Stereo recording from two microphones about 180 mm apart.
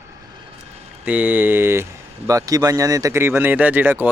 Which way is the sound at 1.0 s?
10° right (ahead or behind).